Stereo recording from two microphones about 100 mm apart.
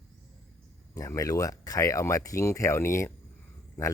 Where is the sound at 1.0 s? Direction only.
35° left (ahead or behind).